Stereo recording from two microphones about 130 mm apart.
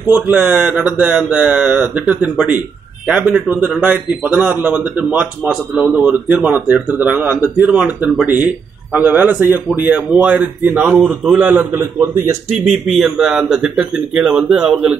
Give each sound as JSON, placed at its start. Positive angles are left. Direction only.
{"t": 0.1, "sound": "a man's voice", "side_deg": -10}
{"t": 11.5, "sound": "speech", "side_deg": -20}
{"t": 12.4, "sound": "speech", "side_deg": -55}
{"t": 13.0, "sound": "speech", "side_deg": 0}